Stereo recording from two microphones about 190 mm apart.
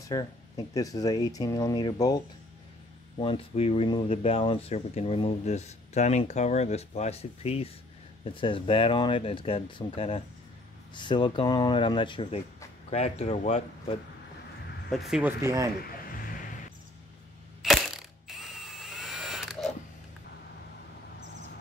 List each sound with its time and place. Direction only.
0.7 s speech: 20° left (ahead or behind); by 13.9 s 40° left (ahead or behind)
14.9 s speech: centre (ahead or behind)
15.4 s a man's voice: 15° right (ahead or behind)
15.8 s vehicle: 50° left (ahead or behind)
17.6 s mechanisms: centre (ahead or behind)